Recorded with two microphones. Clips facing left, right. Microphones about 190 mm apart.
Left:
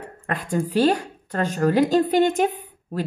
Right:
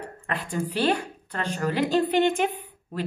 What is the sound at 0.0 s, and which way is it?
Speech, 45° left (ahead or behind).